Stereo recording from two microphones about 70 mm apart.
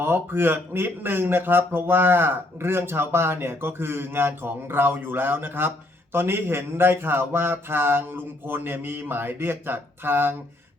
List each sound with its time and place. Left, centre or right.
0.0 s speech: right